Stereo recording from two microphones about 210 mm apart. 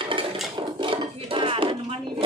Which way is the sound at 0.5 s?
25° right (ahead or behind).